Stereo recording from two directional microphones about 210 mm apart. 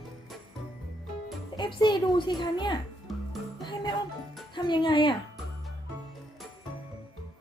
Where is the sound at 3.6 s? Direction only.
20° left (ahead or behind).